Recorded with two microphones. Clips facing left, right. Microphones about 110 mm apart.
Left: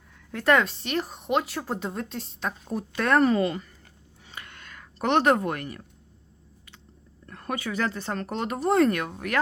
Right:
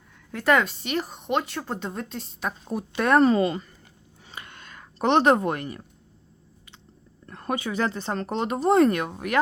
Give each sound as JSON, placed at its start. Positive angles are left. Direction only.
{"t": 0.3, "sound": "a woman's voice", "side_deg": 0}
{"t": 4.3, "sound": "a sound", "side_deg": -20}
{"t": 7.3, "sound": "speech", "side_deg": -25}